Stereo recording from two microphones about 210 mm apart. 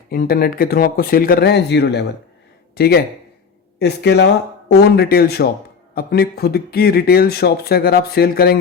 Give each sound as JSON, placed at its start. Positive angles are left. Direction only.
{"t": 0.1, "sound": "speech", "side_deg": 45}